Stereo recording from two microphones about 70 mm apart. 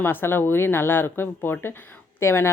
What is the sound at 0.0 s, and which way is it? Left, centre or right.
Speech, left.